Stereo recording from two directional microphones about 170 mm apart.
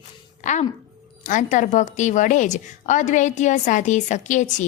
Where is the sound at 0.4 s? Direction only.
45° left (ahead or behind).